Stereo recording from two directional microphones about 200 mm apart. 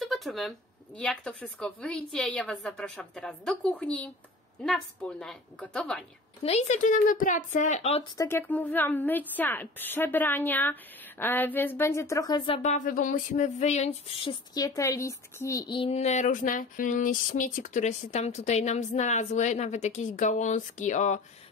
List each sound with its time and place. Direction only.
0.0 s speech: centre (ahead or behind)
6.4 s speech: 35° left (ahead or behind)
8.0 s speech: 15° left (ahead or behind); by 21.2 s 35° left (ahead or behind)